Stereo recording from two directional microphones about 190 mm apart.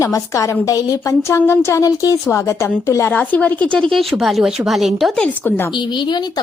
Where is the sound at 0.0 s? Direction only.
15° left (ahead or behind).